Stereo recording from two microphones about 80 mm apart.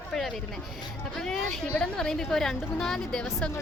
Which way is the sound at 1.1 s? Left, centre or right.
Centre.